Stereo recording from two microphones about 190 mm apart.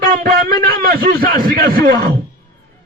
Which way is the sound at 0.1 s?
50° right (ahead or behind).